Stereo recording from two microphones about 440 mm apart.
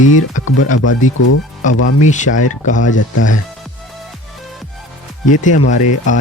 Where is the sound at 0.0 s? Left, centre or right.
Centre.